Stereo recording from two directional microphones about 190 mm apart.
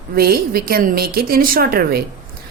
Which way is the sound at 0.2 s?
50° right (ahead or behind).